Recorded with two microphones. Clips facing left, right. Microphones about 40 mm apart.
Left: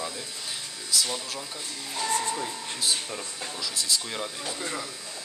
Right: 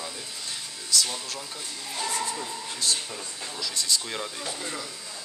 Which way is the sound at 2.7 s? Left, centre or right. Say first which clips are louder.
Even; centre.